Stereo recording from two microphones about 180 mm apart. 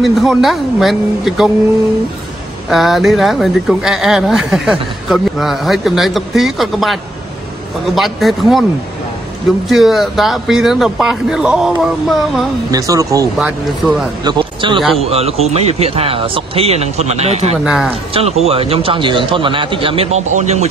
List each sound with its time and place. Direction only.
0.0 s speech: centre (ahead or behind)
2.7 s speech: centre (ahead or behind)
9.7 s speech: centre (ahead or behind)
12.7 s speech: 20° right (ahead or behind)
13.4 s speech: 5° right (ahead or behind)
14.2 s speech: 25° right (ahead or behind)
14.8 s speech: centre (ahead or behind)
15.0 s speech: 35° right (ahead or behind)
17.6 s speech: centre (ahead or behind)
18.1 s speech: 35° right (ahead or behind)